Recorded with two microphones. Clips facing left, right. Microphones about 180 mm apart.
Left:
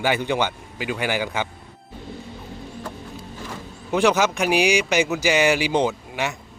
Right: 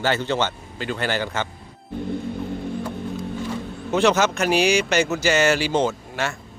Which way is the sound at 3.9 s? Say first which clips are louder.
Even; 10° left (ahead or behind).